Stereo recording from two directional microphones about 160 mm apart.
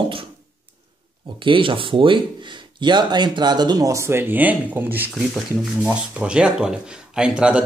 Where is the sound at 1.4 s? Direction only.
30° right (ahead or behind).